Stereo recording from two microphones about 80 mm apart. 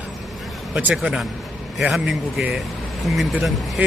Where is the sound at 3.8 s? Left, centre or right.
Centre.